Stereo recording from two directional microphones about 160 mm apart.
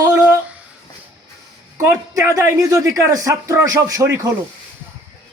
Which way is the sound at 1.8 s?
20° right (ahead or behind).